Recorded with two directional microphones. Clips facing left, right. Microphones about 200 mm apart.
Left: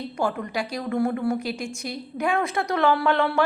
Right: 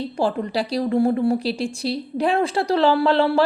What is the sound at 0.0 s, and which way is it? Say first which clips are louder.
A woman's voice: right 4 dB; 30° right (ahead or behind).